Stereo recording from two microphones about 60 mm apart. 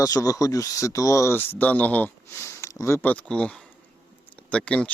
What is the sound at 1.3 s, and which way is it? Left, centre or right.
Speech, left.